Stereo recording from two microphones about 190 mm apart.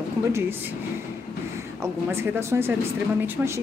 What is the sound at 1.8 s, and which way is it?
Speech, 15° right (ahead or behind).